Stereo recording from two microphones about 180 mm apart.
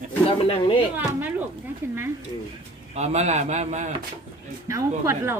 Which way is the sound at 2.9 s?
40° right (ahead or behind).